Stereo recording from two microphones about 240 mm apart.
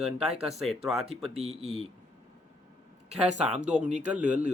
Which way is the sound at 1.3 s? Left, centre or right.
Right.